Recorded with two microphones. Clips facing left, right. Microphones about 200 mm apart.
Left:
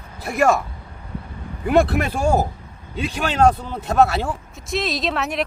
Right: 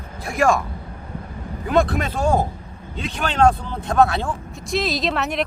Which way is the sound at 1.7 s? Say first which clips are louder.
Left 2 dB; 10° left (ahead or behind).